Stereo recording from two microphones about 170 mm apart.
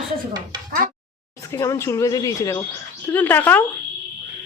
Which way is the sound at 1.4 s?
20° left (ahead or behind).